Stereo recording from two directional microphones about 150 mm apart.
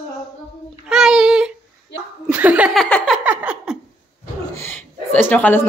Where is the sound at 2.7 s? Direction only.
5° left (ahead or behind).